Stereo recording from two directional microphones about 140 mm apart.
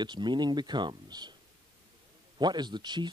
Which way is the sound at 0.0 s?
35° right (ahead or behind).